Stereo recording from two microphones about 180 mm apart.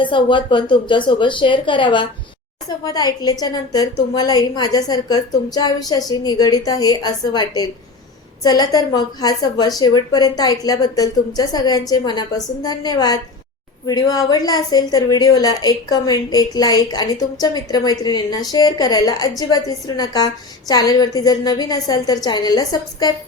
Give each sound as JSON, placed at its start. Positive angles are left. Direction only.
{"t": 0.0, "sound": "a woman's voice", "side_deg": 25}